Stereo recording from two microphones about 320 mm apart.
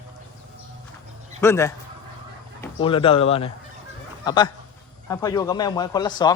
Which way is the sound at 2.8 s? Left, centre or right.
Centre.